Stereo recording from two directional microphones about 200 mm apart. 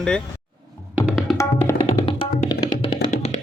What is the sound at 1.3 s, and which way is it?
Tabla, 15° left (ahead or behind).